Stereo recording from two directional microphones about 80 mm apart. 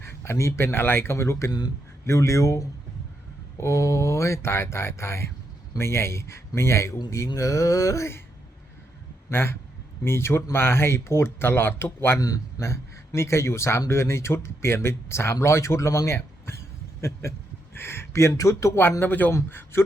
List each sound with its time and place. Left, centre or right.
0.0 s speech: left
1.5 s a man's voice: left
2.0 s speech: left
7.3 s mantra: left
9.3 s speech: left
12.2 s speech: left
18.8 s speech: left